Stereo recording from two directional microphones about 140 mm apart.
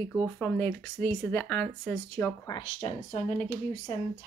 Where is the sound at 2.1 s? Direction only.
25° left (ahead or behind).